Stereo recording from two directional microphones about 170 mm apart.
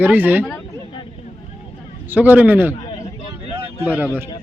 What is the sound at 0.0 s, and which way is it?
Speech, 10° right (ahead or behind).